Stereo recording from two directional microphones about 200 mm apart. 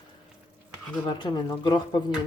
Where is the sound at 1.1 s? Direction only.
20° left (ahead or behind).